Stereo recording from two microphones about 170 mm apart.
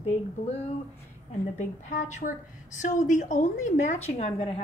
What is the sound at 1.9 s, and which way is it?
A woman's voice, 45° left (ahead or behind).